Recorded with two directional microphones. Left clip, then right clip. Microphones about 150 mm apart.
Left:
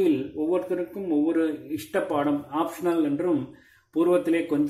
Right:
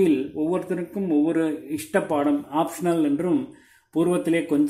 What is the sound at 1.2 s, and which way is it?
Speech, 30° right (ahead or behind).